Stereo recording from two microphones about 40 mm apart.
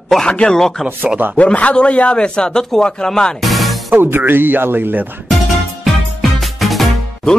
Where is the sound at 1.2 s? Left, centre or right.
Right.